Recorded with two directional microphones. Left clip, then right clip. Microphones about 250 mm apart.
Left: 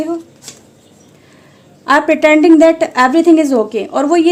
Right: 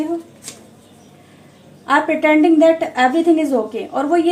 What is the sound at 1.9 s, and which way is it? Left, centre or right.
A woman's voice, left.